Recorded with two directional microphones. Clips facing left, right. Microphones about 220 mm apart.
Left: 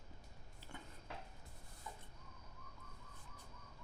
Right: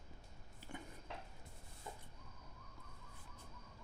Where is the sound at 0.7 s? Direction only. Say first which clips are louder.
Right 4 dB; 15° right (ahead or behind).